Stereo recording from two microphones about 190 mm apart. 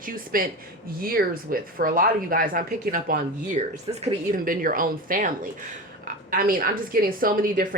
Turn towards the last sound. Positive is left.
turn(degrees=-50)  # may be behind; listen again after turning